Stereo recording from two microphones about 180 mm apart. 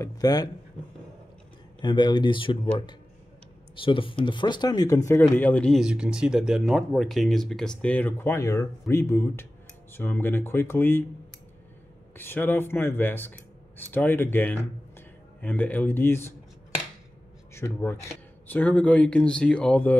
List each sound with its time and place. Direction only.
0.0 s speech: 20° left (ahead or behind)
1.8 s speech: 25° left (ahead or behind)
12.2 s speech: 10° left (ahead or behind)
17.6 s speech: 15° left (ahead or behind)